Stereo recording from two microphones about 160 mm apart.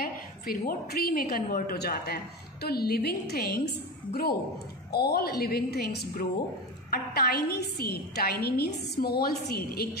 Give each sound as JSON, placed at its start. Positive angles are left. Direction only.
{"t": 0.0, "sound": "a woman's voice", "side_deg": 65}